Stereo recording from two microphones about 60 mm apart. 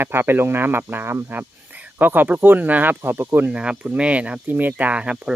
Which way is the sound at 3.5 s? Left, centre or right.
Centre.